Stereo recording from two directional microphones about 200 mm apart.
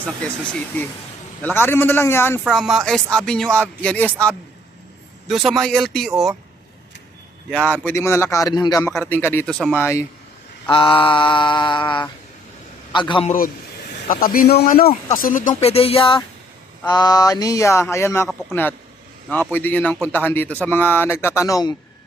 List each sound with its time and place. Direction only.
1.4 s speech: 10° left (ahead or behind)
2.4 s speech: centre (ahead or behind)
7.5 s speech: 10° left (ahead or behind)
8.9 s speech: 5° left (ahead or behind)
10.7 s mantra: 25° left (ahead or behind)
13.2 s a man's voice: 45° left (ahead or behind)
15.2 s mantra: 40° left (ahead or behind)
16.8 s speech: 20° left (ahead or behind)
19.3 s speech: 10° left (ahead or behind)